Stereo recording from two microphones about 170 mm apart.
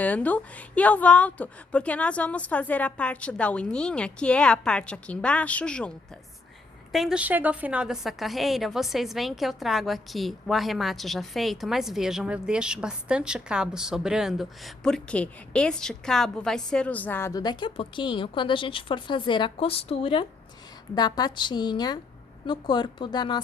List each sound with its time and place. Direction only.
0.0 s a woman's voice: 10° left (ahead or behind)
6.9 s a woman's voice: 5° right (ahead or behind); by 23.4 s 25° left (ahead or behind)